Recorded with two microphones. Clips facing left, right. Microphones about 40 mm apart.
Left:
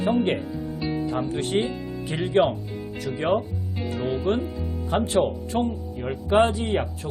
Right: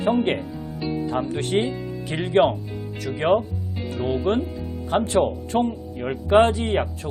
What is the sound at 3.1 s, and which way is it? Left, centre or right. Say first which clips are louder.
Speech: right 1 dB; centre.